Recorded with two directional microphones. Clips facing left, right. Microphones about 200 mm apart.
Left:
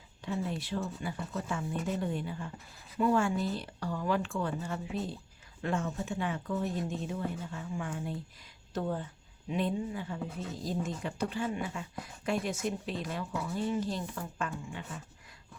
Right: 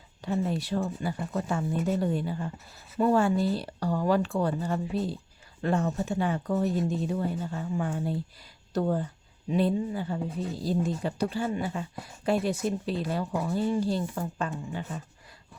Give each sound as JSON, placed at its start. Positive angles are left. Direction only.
{"t": 0.3, "sound": "speech", "side_deg": -40}
{"t": 13.3, "sound": "speech", "side_deg": -45}
{"t": 13.7, "sound": "speech", "side_deg": -35}